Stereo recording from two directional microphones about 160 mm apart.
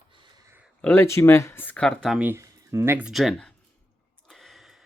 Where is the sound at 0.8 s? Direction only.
15° left (ahead or behind).